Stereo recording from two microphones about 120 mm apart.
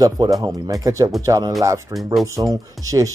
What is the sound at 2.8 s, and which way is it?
Speech, 30° right (ahead or behind).